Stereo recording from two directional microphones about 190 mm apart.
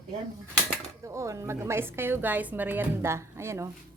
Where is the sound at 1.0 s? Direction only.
15° right (ahead or behind).